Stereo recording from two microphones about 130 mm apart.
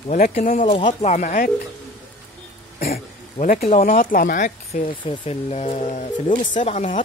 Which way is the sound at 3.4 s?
50° left (ahead or behind).